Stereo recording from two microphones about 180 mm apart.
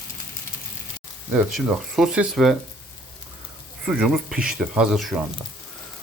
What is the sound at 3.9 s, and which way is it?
Speech, 5° right (ahead or behind).